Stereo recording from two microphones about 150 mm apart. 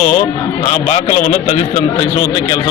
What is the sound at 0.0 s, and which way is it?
A man's voice, 50° left (ahead or behind).